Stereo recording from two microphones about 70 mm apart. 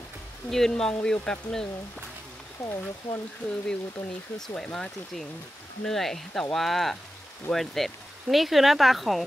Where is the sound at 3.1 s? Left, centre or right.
Left.